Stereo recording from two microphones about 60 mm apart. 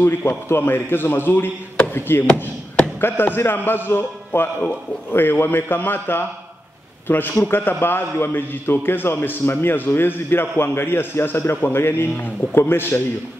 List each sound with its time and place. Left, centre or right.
0.0 s a man's voice: left